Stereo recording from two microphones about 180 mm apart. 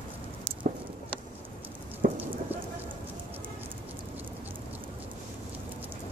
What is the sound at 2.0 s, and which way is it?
Clip-clop, 60° right (ahead or behind).